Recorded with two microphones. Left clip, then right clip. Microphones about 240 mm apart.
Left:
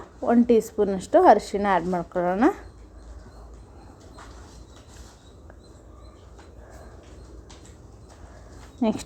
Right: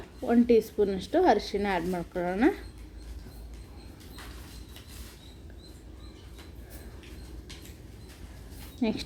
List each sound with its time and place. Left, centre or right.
0.3 s speech: centre
8.8 s a woman's voice: centre